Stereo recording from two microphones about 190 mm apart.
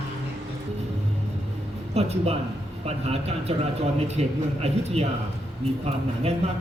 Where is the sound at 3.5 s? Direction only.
30° right (ahead or behind).